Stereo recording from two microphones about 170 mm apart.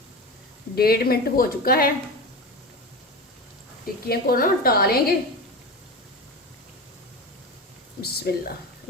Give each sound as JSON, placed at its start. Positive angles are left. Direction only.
{"t": 0.8, "sound": "speech", "side_deg": 65}
{"t": 4.1, "sound": "speech", "side_deg": 60}
{"t": 8.0, "sound": "speech", "side_deg": 65}